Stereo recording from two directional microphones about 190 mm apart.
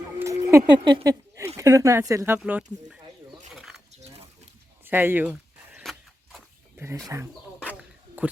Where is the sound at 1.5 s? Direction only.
15° right (ahead or behind).